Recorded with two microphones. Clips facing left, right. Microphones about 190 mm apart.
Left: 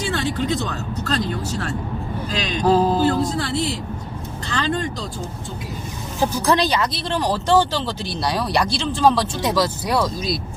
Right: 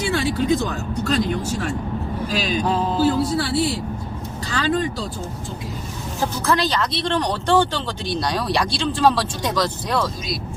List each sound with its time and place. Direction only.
0.1 s speech: 10° right (ahead or behind)
2.6 s speech: 35° left (ahead or behind)
3.3 s speech: 10° right (ahead or behind)
6.1 s a woman's voice: 15° left (ahead or behind)
6.7 s speech: 5° left (ahead or behind)